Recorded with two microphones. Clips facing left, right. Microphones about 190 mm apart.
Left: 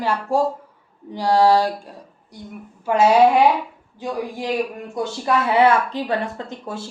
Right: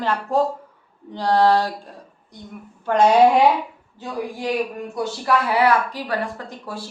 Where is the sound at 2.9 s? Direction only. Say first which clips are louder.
Even; 5° left (ahead or behind).